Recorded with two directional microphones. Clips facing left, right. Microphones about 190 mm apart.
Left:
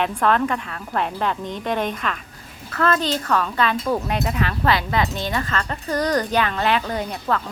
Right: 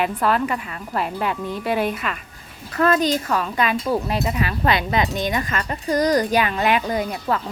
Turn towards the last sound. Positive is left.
turn(degrees=-10)  # may be behind; listen again after turning